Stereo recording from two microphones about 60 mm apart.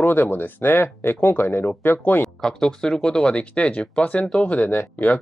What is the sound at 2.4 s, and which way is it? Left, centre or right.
Speech, centre.